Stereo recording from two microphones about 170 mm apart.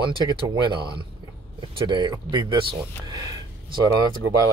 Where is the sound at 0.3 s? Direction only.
30° right (ahead or behind).